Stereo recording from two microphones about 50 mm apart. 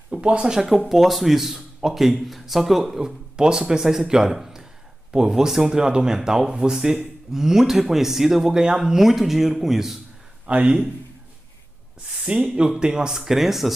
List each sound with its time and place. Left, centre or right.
0.1 s speech: centre
0.7 s speech: centre
10.5 s speech: right
12.4 s speech: right; by 13.7 s centre